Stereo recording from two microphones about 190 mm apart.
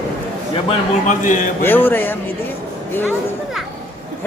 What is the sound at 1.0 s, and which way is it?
Speech, 45° left (ahead or behind).